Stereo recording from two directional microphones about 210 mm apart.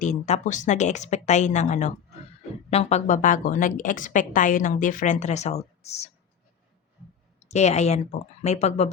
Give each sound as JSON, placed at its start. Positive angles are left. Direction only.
{"t": 0.0, "sound": "a woman's voice", "side_deg": 35}
{"t": 7.4, "sound": "a woman's voice", "side_deg": 30}